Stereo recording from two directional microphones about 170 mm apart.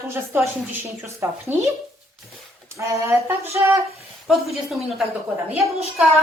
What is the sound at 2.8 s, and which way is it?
Speech, 15° right (ahead or behind).